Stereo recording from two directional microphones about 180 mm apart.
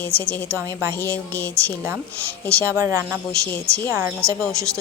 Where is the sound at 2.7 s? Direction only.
10° right (ahead or behind).